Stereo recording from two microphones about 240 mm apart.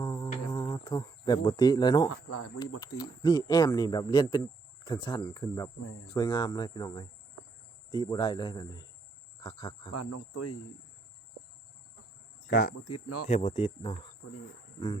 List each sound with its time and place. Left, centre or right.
0.0 s insect: centre
2.0 s speech: left
3.0 s speech: centre
9.9 s speech: left
12.5 s speech: left
12.7 s speech: left
13.2 s speech: left